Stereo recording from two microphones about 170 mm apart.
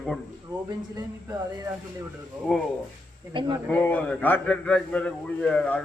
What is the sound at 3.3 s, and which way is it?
Speech, 30° right (ahead or behind).